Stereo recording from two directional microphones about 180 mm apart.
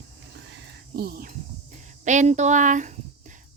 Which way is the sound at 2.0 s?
40° right (ahead or behind).